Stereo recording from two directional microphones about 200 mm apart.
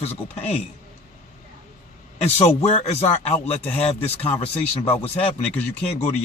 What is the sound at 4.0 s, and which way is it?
Speech, 10° left (ahead or behind).